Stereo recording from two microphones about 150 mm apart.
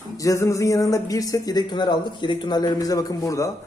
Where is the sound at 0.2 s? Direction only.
20° left (ahead or behind).